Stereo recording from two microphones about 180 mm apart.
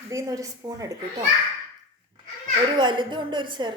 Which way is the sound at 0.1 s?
20° right (ahead or behind).